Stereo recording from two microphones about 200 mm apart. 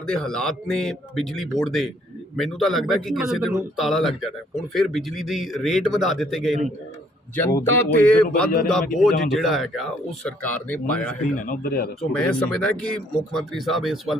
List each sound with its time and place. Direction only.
0.0 s speech: 5° left (ahead or behind)
7.6 s speech: 10° left (ahead or behind)
11.4 s speech: 45° left (ahead or behind)
12.1 s speech: 5° left (ahead or behind)